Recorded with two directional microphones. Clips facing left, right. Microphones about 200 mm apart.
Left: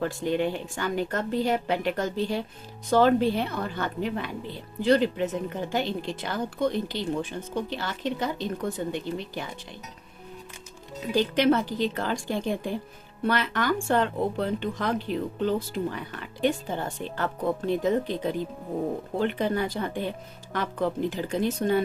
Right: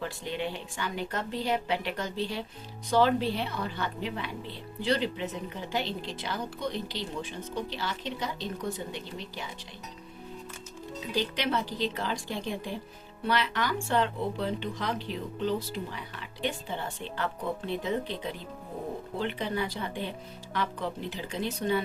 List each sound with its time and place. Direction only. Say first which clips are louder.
0.0 s speech: left 8 dB; 50° left (ahead or behind)
11.1 s speech: left 8 dB; 50° left (ahead or behind)